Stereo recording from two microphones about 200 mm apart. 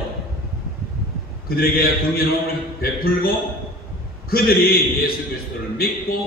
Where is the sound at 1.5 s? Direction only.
50° left (ahead or behind).